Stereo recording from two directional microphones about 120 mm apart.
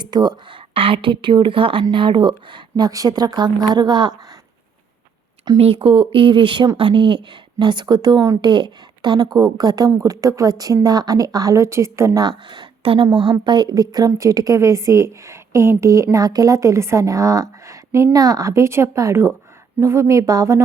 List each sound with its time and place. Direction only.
0.0 s speech: 35° right (ahead or behind)
0.7 s a woman's voice: 50° right (ahead or behind)
5.5 s a woman's voice: 50° right (ahead or behind); by 12.2 s 25° right (ahead or behind)
12.5 s a woman's voice: 45° right (ahead or behind); by 20.6 s 25° right (ahead or behind)